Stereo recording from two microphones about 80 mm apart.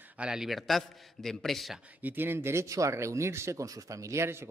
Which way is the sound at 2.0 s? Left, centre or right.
Right.